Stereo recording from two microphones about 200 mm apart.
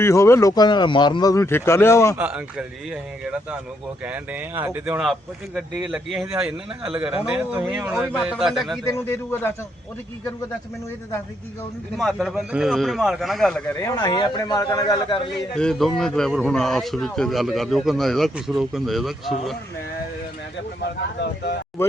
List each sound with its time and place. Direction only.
0.0 s a man's voice: 15° left (ahead or behind)
2.1 s a man's voice: 5° right (ahead or behind)
6.1 s a man's voice: 10° right (ahead or behind)
8.9 s a man's voice: 10° left (ahead or behind)
11.9 s a man's voice: centre (ahead or behind); by 15.3 s 20° left (ahead or behind)
15.5 s a man's voice: 5° left (ahead or behind)
21.2 s speech: 55° left (ahead or behind)